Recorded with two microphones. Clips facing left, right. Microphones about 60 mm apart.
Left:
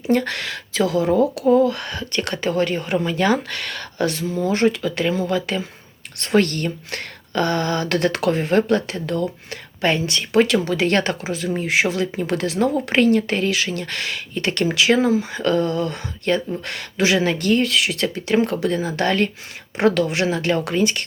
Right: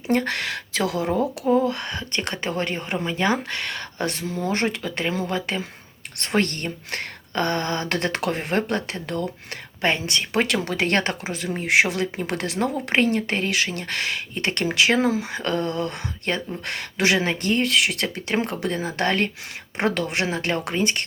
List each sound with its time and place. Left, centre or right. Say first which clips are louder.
0.1 s speech: left 2 dB; right
1.5 s speech: left 3 dB; right
10.5 s speech: left 4 dB; right
11.7 s speech: right 2 dB; right
12.5 s speech: left 3 dB; right
13.5 s speech: left 2 dB; right
15.5 s a sound: left 4 dB; left
16.2 s speech: left 6 dB; right
17.7 s speech: left 2 dB; right